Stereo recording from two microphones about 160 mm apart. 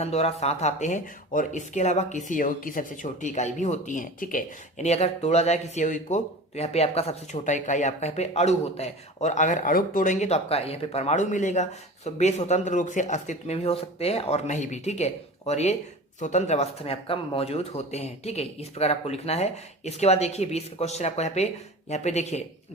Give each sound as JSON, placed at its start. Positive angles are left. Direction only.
{"t": 0.0, "sound": "speech", "side_deg": 40}